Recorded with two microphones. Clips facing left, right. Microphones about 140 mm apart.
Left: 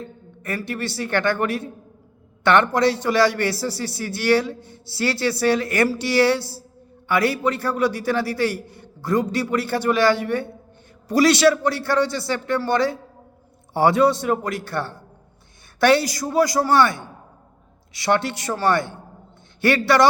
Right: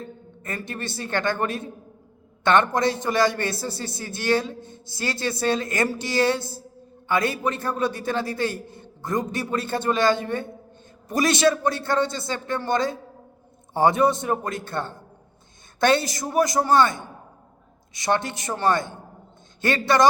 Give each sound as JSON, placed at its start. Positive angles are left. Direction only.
{"t": 0.4, "sound": "a man's voice", "side_deg": -20}
{"t": 17.9, "sound": "a man's voice", "side_deg": -20}